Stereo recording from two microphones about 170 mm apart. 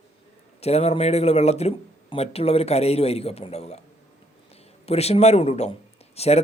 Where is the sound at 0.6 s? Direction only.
40° left (ahead or behind).